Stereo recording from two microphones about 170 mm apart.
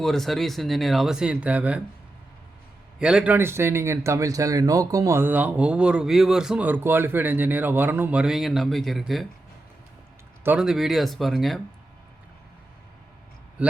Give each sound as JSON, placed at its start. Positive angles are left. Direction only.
{"t": 0.0, "sound": "speech", "side_deg": 0}
{"t": 3.0, "sound": "speech", "side_deg": -5}
{"t": 10.4, "sound": "speech", "side_deg": -5}
{"t": 13.6, "sound": "a man's voice", "side_deg": -10}